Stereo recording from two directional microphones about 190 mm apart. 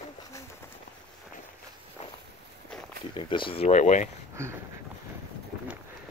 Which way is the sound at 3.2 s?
25° left (ahead or behind).